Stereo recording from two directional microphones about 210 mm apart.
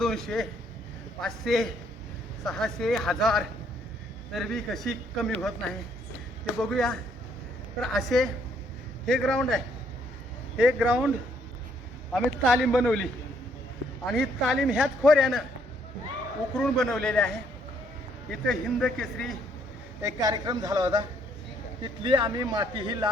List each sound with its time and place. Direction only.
0.0 s a man's voice: centre (ahead or behind)
10.6 s a man's voice: 5° right (ahead or behind)
12.1 s a man's voice: centre (ahead or behind)
14.1 s a man's voice: centre (ahead or behind)
16.6 s a man's voice: centre (ahead or behind)
20.0 s a woman's voice: 15° right (ahead or behind)
22.0 s a woman's voice: 20° right (ahead or behind)